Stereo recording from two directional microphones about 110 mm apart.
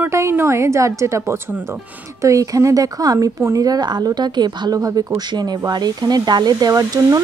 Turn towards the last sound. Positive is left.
turn(degrees=-35)  # may be behind; listen again after turning